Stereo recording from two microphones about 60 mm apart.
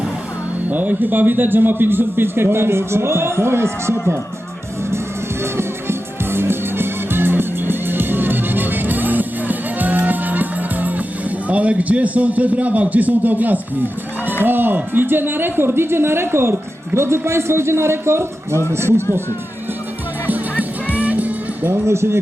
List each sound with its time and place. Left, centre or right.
0.7 s speech: right
5.4 s music: right
11.4 s a man's voice: right
20.2 s music: right
21.7 s a woman's voice: right